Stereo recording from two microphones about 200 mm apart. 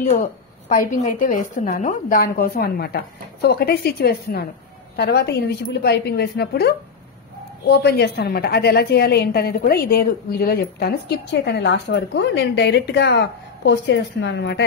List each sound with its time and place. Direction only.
0.7 s a woman's voice: 40° left (ahead or behind); by 14.6 s 60° left (ahead or behind)